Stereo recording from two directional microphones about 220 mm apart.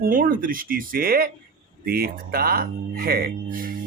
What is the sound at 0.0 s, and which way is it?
Speech, 40° right (ahead or behind).